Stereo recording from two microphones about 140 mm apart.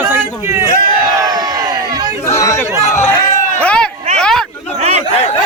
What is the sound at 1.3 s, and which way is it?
Crowd, 30° right (ahead or behind).